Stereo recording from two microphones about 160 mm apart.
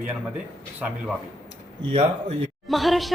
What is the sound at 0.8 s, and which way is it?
Speech, 5° right (ahead or behind).